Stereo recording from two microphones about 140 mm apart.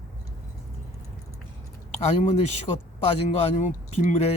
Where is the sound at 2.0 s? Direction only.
50° left (ahead or behind).